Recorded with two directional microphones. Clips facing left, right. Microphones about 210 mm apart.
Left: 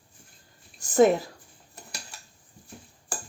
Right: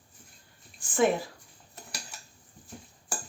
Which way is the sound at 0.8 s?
40° left (ahead or behind).